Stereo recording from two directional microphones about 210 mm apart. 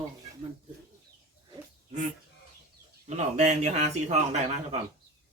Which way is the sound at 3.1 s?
35° right (ahead or behind).